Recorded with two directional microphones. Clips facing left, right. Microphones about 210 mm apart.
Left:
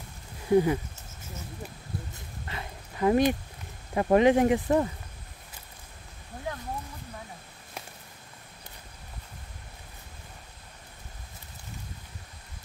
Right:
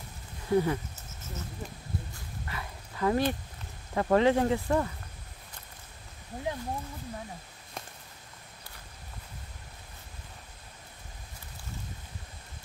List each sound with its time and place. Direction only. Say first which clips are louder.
0.5 s speech: left 4 dB; 15° left (ahead or behind)
2.1 s dog: left 1 dB; 25° left (ahead or behind)
3.9 s speech: left 3 dB; 15° left (ahead or behind)